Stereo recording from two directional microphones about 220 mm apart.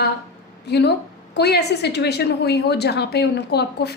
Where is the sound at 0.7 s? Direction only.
50° left (ahead or behind).